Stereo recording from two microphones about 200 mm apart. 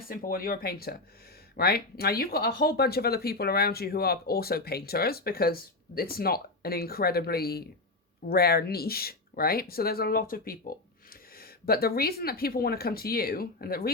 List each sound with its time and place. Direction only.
0.1 s speech: 45° left (ahead or behind)